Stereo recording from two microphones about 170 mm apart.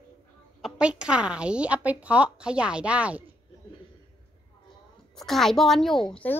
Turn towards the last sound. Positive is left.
turn(degrees=5)  # may be behind; listen again after turning